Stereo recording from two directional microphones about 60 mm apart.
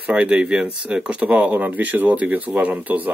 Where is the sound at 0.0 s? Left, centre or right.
Right.